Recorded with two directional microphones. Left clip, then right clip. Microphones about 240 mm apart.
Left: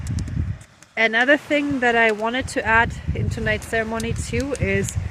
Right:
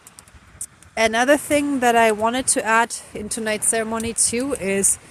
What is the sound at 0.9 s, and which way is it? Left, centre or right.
Speech, centre.